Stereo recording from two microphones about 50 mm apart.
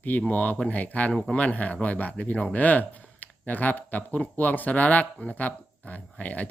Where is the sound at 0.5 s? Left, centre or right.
Left.